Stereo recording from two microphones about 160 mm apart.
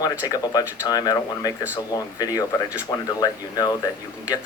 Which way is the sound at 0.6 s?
10° right (ahead or behind).